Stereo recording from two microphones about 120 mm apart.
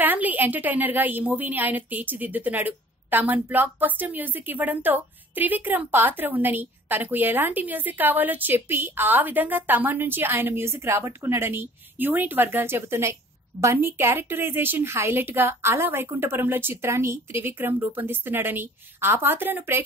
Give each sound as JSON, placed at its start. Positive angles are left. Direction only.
{"t": 0.0, "sound": "a woman's voice", "side_deg": -15}